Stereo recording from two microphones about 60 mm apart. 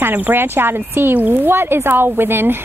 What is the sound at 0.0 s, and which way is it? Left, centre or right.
Speech, right.